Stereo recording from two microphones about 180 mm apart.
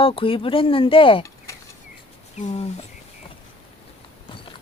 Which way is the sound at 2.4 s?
40° left (ahead or behind).